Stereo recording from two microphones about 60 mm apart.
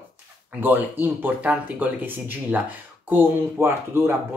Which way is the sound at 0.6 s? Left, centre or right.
Right.